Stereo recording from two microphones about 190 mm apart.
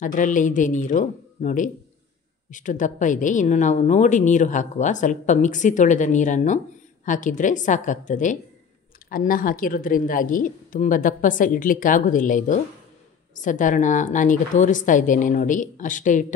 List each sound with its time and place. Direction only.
0.0 s a woman's voice: 45° left (ahead or behind)